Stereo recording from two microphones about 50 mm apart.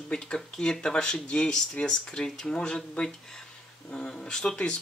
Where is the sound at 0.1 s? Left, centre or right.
Centre.